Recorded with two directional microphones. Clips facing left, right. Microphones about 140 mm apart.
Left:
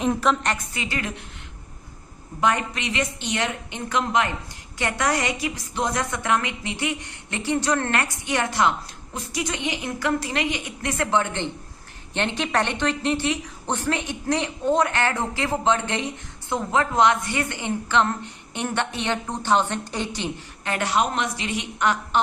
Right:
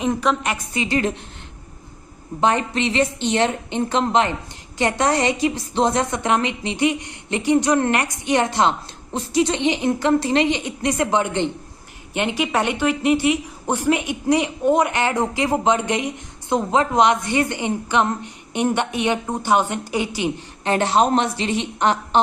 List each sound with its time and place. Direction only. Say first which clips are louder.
0.0 s a woman's voice: right 1 dB; centre (ahead or behind)
0.7 s a woman's voice: right 8 dB; 25° right (ahead or behind)
2.4 s a woman's voice: right 4 dB; 25° right (ahead or behind); by 20.3 s 10° right (ahead or behind)
20.7 s a woman's voice: right 6 dB; 25° right (ahead or behind)